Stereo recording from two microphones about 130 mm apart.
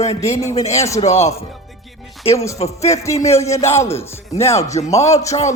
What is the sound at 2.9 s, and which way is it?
Speech, 25° left (ahead or behind).